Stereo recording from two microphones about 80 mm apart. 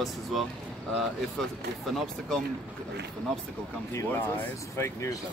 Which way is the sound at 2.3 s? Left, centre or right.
Centre.